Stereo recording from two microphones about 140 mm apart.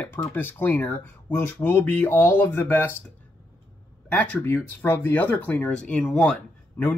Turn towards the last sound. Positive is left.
turn(degrees=10)  # may be behind; listen again after turning